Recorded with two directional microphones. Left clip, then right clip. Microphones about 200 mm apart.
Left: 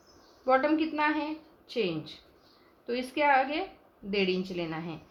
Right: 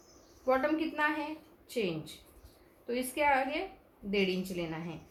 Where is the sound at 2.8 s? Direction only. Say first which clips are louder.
Left 3 dB; 35° left (ahead or behind).